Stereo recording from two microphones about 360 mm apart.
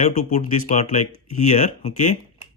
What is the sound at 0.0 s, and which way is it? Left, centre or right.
Speech, left.